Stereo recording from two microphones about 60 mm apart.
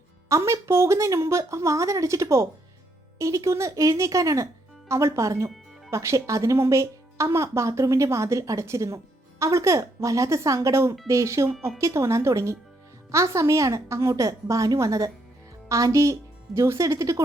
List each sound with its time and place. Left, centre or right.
0.3 s a woman's voice: right